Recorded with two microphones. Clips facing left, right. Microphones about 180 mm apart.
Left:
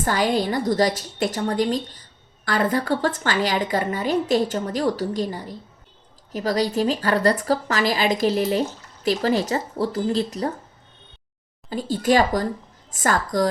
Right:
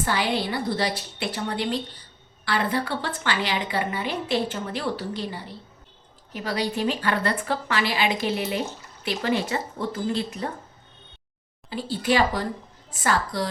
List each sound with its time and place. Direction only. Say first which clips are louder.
0.0 s a woman's voice: left 4 dB; 45° left (ahead or behind)
11.7 s a woman's voice: left 4 dB; 45° left (ahead or behind)